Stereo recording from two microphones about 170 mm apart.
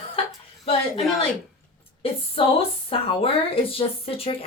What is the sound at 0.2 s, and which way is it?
Chuckle, 35° left (ahead or behind).